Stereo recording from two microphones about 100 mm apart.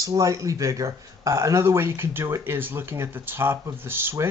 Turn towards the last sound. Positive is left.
turn(degrees=-20)  # may be behind; listen again after turning